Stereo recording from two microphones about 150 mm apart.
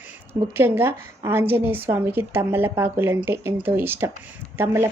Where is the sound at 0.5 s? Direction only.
15° right (ahead or behind).